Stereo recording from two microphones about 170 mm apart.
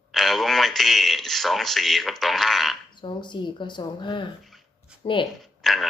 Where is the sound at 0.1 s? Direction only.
Centre (ahead or behind).